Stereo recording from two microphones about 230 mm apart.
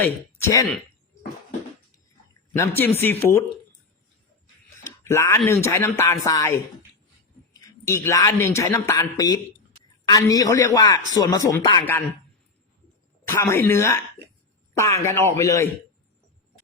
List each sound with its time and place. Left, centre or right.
0.0 s speech: centre
2.5 s speech: centre
4.8 s a sound: centre
5.4 s speech: centre
7.9 s speech: centre
13.2 s speech: centre